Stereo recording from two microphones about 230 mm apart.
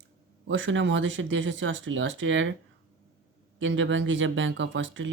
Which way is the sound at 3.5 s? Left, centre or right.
Right.